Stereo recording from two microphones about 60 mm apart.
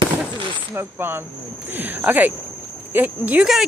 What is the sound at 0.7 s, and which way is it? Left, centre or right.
Speech, right.